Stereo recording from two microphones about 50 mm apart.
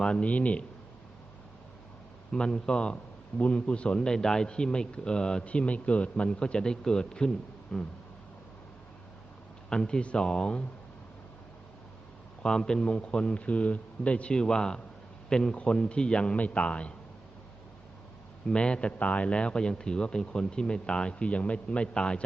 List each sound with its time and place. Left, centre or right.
0.0 s a man's voice: left
2.3 s a man's voice: centre
9.6 s speech: centre
12.4 s a man's voice: centre
18.4 s a man's voice: left